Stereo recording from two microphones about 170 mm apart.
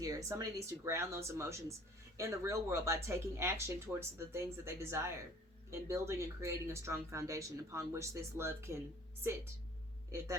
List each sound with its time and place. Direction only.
0.0 s speech: 20° right (ahead or behind)
10.1 s speech: 15° right (ahead or behind)